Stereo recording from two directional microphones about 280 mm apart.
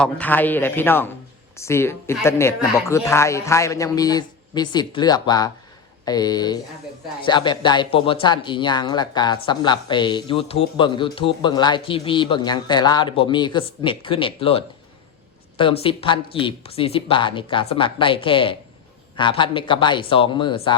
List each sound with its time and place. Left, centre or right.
0.0 s speech: centre